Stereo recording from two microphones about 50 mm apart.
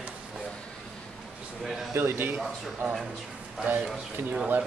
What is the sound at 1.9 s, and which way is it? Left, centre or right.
Speech, right.